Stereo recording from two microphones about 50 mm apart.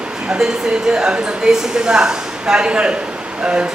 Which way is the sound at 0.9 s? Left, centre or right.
Centre.